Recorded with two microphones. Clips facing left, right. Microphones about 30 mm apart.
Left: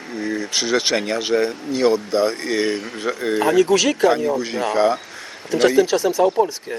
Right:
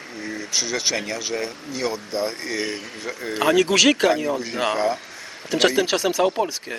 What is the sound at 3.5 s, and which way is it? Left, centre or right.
Speech, right.